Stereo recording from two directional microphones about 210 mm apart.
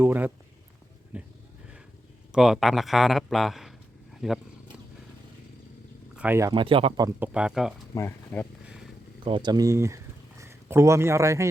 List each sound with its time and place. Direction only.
0.0 s speech: 10° right (ahead or behind)
2.3 s speech: centre (ahead or behind)
6.1 s speech: 10° right (ahead or behind)
7.3 s speech: 5° right (ahead or behind)
7.9 s speech: 10° left (ahead or behind)
8.6 s a sound: 5° right (ahead or behind)
9.2 s a man's voice: 20° right (ahead or behind)